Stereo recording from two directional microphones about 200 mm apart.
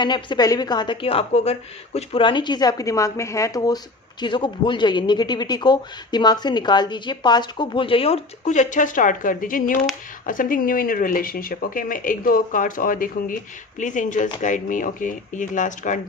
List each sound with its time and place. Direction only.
0.0 s a man's voice: 20° left (ahead or behind); by 16.0 s 40° left (ahead or behind)